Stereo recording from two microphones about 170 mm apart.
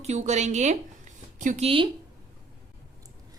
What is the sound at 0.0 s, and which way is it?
A woman's voice, 40° right (ahead or behind).